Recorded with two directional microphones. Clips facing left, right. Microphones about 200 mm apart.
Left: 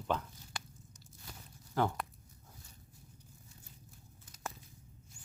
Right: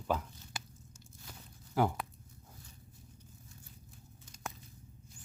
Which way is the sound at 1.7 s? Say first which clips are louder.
Right 2 dB; 10° right (ahead or behind).